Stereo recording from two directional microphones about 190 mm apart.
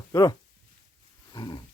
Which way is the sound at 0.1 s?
20° left (ahead or behind).